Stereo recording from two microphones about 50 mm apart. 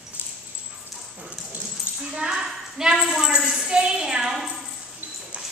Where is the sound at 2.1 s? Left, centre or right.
Centre.